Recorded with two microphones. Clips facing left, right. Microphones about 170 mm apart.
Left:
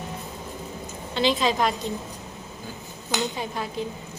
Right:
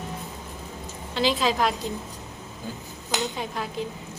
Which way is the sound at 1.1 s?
Centre (ahead or behind).